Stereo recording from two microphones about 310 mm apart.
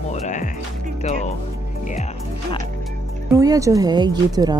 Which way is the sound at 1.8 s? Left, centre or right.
Left.